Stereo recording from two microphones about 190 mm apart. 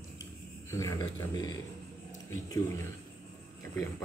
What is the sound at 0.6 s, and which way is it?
Speech, 15° left (ahead or behind).